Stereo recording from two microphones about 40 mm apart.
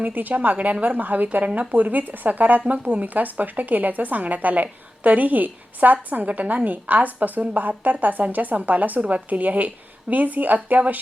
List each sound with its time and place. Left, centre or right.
0.0 s a woman's voice: right
2.6 s a woman's voice: right